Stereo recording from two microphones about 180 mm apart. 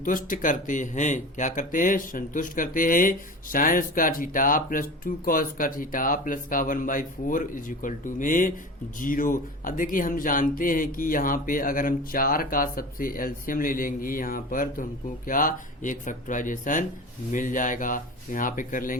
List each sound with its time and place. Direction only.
0.0 s speech: 50° left (ahead or behind)